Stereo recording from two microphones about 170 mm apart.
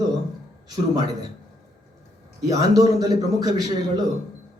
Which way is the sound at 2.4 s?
20° right (ahead or behind).